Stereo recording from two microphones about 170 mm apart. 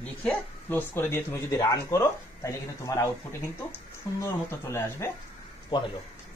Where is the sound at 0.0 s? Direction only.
10° left (ahead or behind).